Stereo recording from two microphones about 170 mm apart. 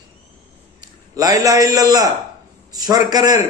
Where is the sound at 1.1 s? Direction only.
20° right (ahead or behind).